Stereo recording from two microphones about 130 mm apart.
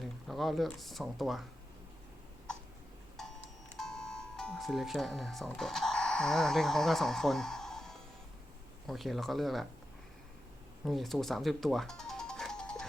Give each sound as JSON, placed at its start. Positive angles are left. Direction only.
{"t": 0.0, "sound": "speech", "side_deg": 0}
{"t": 3.2, "sound": "music", "side_deg": 5}
{"t": 3.8, "sound": "speech", "side_deg": 5}
{"t": 10.8, "sound": "music", "side_deg": 0}